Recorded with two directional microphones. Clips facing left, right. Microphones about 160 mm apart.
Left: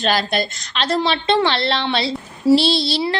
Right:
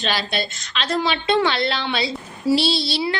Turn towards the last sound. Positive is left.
turn(degrees=30)  # may be behind; listen again after turning